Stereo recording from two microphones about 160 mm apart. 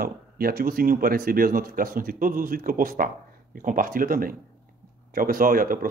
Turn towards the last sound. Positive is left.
turn(degrees=-60)  # may be behind; listen again after turning